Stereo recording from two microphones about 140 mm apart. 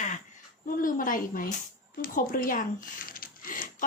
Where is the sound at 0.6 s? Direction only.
75° left (ahead or behind).